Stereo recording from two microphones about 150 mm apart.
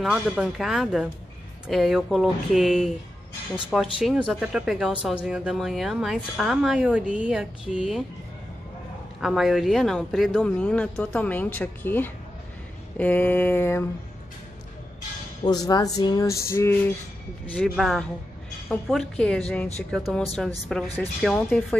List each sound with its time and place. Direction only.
0.0 s speech: 5° right (ahead or behind)
9.2 s speech: centre (ahead or behind)
10.6 s speech: 10° left (ahead or behind)
15.4 s speech: 25° left (ahead or behind)
17.6 s speech: centre (ahead or behind)